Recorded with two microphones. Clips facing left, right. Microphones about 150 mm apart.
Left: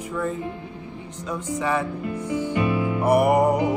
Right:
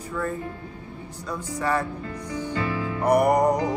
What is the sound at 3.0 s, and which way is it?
Music, 5° left (ahead or behind).